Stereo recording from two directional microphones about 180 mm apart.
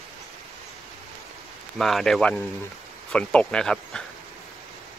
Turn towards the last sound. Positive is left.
turn(degrees=5)  # may be behind; listen again after turning